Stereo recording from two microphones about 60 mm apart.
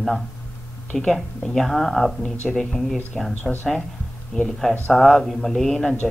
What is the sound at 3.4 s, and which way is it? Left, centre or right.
Speech, left.